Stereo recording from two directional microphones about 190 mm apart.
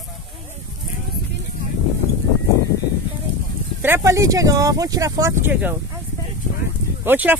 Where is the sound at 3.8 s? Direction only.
10° right (ahead or behind).